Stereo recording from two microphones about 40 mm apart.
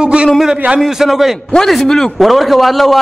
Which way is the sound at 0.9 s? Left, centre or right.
Centre.